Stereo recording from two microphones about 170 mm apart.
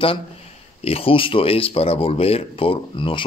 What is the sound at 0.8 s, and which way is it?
Speech, 35° left (ahead or behind).